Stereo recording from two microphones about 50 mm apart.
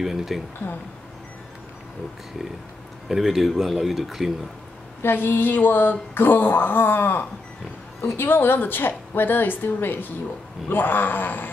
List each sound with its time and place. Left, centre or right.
0.0 s speech: centre
3.1 s speech: centre
5.0 s speech: left